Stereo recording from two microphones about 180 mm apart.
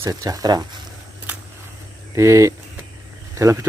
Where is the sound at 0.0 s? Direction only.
20° right (ahead or behind).